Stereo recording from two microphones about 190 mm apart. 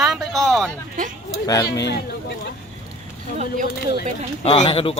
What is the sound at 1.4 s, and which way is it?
Speech, 15° left (ahead or behind).